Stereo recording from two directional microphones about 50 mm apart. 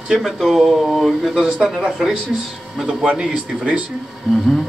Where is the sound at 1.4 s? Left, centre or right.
Centre.